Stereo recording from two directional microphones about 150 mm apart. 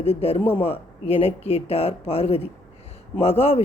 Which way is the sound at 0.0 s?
40° left (ahead or behind).